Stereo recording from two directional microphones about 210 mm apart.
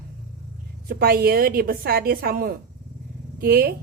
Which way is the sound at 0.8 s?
45° right (ahead or behind).